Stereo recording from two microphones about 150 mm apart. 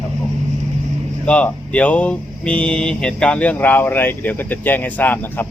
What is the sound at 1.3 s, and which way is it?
Speech, 10° left (ahead or behind).